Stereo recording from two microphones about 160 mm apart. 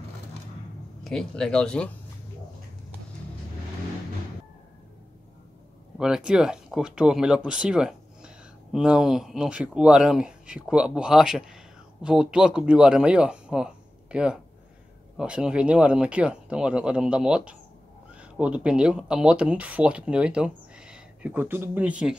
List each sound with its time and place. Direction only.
1.0 s speech: 5° left (ahead or behind)
5.9 s speech: 5° right (ahead or behind)